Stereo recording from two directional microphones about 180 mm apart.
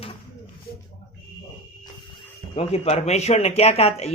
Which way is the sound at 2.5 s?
35° left (ahead or behind).